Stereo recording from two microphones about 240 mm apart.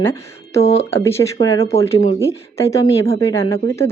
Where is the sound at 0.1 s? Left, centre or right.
Left.